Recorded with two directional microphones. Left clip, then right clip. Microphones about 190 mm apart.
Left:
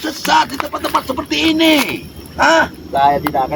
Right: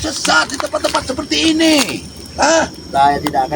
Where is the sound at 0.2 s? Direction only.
Centre (ahead or behind).